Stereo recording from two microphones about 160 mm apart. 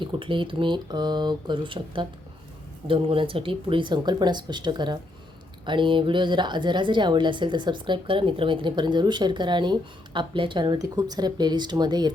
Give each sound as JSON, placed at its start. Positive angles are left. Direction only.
{"t": 0.0, "sound": "a woman's voice", "side_deg": -30}